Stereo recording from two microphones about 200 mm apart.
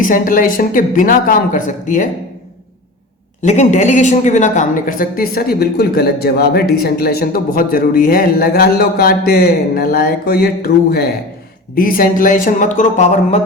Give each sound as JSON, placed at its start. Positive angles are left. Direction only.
{"t": 0.0, "sound": "speech", "side_deg": 40}
{"t": 3.4, "sound": "speech", "side_deg": 35}